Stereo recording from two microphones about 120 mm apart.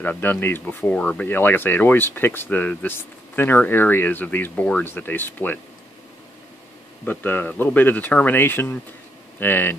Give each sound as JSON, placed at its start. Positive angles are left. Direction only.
{"t": 0.0, "sound": "speech", "side_deg": 15}
{"t": 7.1, "sound": "speech", "side_deg": 15}